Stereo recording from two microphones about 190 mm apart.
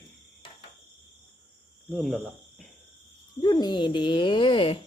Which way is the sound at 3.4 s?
20° left (ahead or behind).